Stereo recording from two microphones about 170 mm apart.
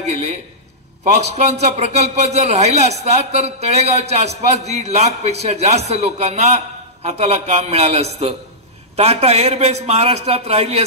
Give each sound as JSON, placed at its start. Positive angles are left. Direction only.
{"t": 1.0, "sound": "a man's voice", "side_deg": -40}